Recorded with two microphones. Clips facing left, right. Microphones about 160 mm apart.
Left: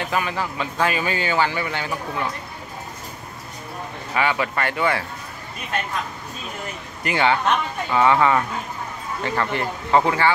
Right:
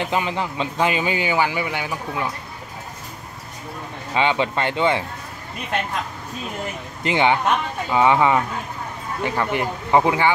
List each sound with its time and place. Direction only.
0.0 s speech: 20° right (ahead or behind)
4.1 s speech: 20° right (ahead or behind)
7.0 s a man's voice: 20° right (ahead or behind)